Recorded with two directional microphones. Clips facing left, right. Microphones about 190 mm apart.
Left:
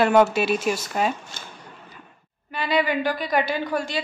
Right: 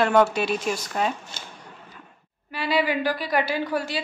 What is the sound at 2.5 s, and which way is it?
A woman's voice, 5° right (ahead or behind).